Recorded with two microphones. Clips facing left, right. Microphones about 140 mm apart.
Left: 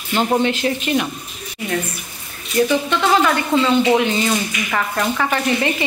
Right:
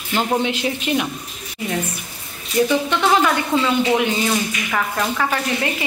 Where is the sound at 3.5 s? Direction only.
10° right (ahead or behind).